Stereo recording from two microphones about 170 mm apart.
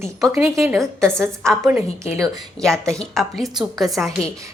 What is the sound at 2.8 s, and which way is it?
A woman's voice, 5° left (ahead or behind).